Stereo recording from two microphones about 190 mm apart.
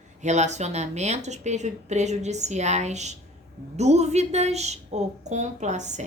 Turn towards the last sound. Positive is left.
turn(degrees=-40)  # may be behind; listen again after turning